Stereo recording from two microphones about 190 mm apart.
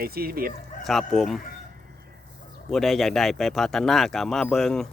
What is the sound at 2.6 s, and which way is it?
Speech, centre (ahead or behind).